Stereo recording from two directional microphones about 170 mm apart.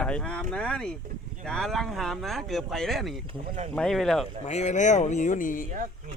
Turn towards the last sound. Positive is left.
turn(degrees=50)  # may be behind; listen again after turning